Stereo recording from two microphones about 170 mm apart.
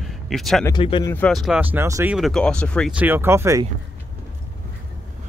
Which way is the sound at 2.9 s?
10° right (ahead or behind).